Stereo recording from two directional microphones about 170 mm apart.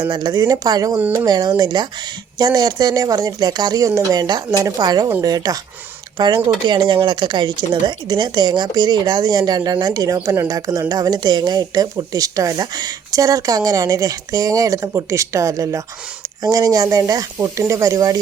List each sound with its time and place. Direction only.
0.0 s speech: 25° right (ahead or behind)